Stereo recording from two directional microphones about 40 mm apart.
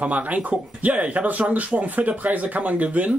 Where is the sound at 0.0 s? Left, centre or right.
Right.